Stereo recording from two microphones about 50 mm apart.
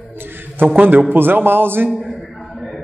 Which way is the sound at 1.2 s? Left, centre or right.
Right.